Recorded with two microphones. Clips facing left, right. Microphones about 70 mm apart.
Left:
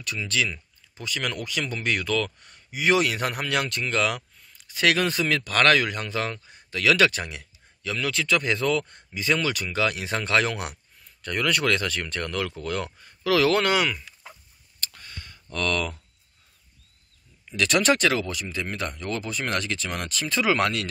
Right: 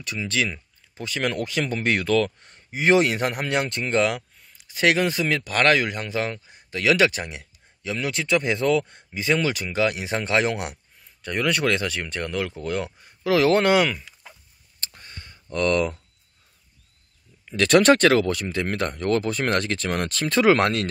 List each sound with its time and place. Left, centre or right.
0.0 s speech: right
14.8 s clicking: right
17.5 s speech: right